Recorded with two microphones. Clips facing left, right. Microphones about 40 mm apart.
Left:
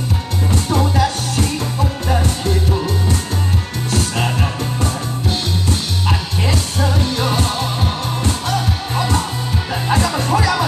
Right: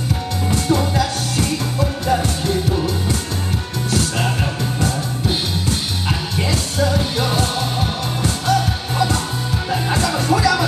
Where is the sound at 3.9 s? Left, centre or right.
Left.